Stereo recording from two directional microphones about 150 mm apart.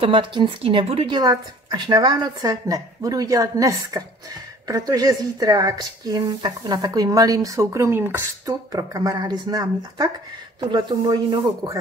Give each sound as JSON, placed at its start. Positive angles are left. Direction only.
{"t": 0.0, "sound": "speech", "side_deg": -35}
{"t": 1.1, "sound": "a woman's voice", "side_deg": -30}